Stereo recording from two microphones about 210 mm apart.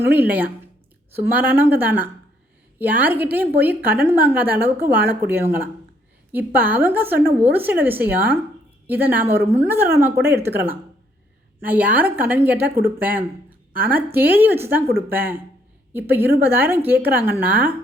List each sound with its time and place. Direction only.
0.0 s a woman's voice: 10° right (ahead or behind)